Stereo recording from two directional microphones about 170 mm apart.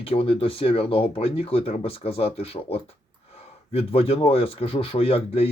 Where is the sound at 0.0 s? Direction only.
35° left (ahead or behind).